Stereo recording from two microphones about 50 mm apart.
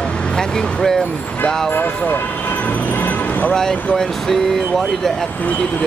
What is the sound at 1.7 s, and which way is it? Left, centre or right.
Speech, left.